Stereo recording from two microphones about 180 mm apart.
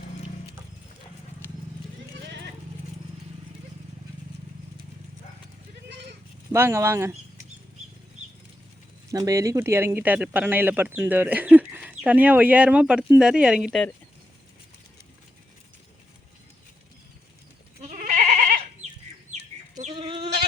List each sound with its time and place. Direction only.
2.2 s horse: 70° right (ahead or behind)
5.9 s goat: 70° right (ahead or behind)
6.5 s speech: 15° right (ahead or behind)
9.0 s speech: 20° right (ahead or behind)
17.8 s goat: 40° right (ahead or behind)
19.3 s chicken: 40° right (ahead or behind)
20.0 s goat: 30° right (ahead or behind)